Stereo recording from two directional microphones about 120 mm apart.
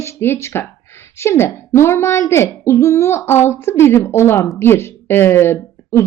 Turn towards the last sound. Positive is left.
turn(degrees=20)  # may be behind; listen again after turning